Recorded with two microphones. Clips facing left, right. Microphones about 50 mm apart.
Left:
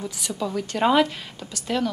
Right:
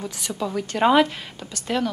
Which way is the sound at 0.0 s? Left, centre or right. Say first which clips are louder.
Even; centre.